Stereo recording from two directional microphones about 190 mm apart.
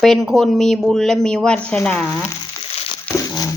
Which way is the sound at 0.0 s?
Centre (ahead or behind).